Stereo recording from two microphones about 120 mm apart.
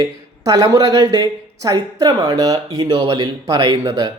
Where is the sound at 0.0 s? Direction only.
35° right (ahead or behind).